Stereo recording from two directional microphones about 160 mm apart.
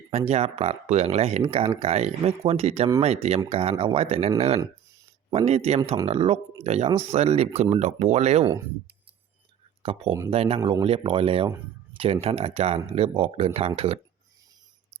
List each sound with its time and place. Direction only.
0.1 s speech: 40° right (ahead or behind)
9.8 s speech: 35° right (ahead or behind)